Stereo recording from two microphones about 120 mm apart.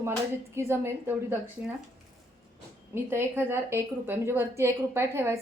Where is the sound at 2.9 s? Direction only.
20° right (ahead or behind).